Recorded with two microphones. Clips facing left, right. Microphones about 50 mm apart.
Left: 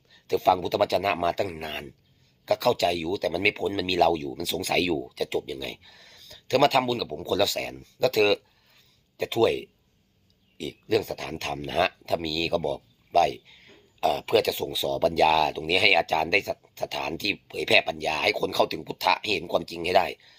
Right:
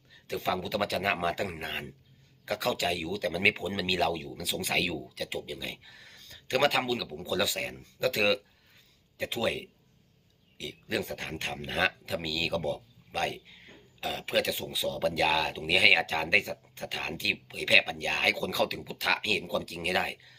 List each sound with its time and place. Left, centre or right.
0.1 s speech: centre
2.5 s speech: centre
6.1 s a sound: right
6.5 s speech: centre
10.8 s speech: centre
12.5 s speech: right
13.1 s speech: centre
17.9 s speech: centre